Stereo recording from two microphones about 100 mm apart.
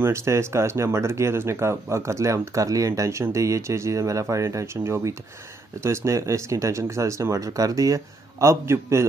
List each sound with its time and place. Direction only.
0.0 s speech: 30° right (ahead or behind)